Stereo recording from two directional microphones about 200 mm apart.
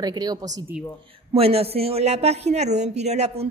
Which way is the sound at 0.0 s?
20° right (ahead or behind).